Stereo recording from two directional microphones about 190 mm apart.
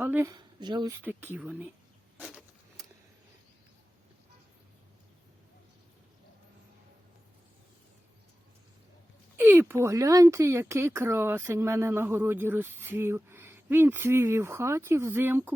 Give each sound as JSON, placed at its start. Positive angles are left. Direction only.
{"t": 0.0, "sound": "speech", "side_deg": -10}
{"t": 0.3, "sound": "speech", "side_deg": -25}
{"t": 1.0, "sound": "speech", "side_deg": -10}
{"t": 9.4, "sound": "speech", "side_deg": -10}